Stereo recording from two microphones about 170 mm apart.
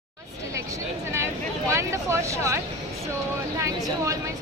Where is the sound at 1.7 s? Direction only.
15° right (ahead or behind).